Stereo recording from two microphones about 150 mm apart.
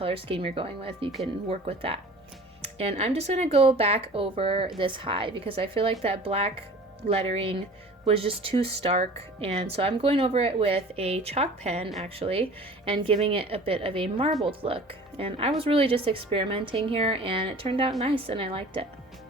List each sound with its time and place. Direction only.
0.0 s a woman's voice: 35° right (ahead or behind)